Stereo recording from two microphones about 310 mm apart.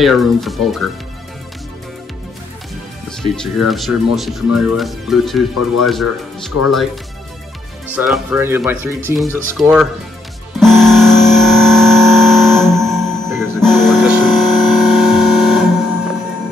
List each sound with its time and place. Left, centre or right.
0.0 s speech: centre
3.1 s speech: centre
7.9 s speech: centre
10.6 s music: centre
12.9 s music: centre
13.4 s music: centre